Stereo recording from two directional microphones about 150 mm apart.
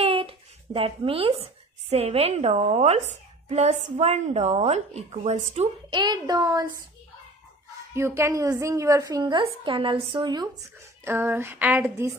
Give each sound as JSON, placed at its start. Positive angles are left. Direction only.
{"t": 0.0, "sound": "a woman's voice", "side_deg": -35}
{"t": 5.9, "sound": "a woman's voice", "side_deg": -30}
{"t": 7.9, "sound": "a woman's voice", "side_deg": -15}
{"t": 11.1, "sound": "a sound", "side_deg": -15}